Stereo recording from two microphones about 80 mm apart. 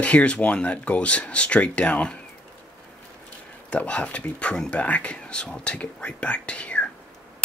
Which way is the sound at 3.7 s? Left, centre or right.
Centre.